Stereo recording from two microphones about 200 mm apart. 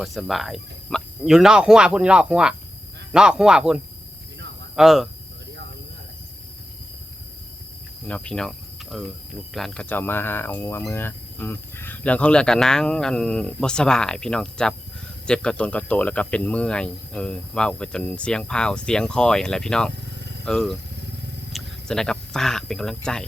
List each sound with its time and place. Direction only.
0.0 s speech: centre (ahead or behind)
4.8 s speech: centre (ahead or behind)
8.0 s speech: 5° left (ahead or behind)
19.9 s vehicle: 60° right (ahead or behind)
20.4 s speech: 5° left (ahead or behind)
20.9 s vehicle: 60° right (ahead or behind)
21.5 s speech: 5° left (ahead or behind)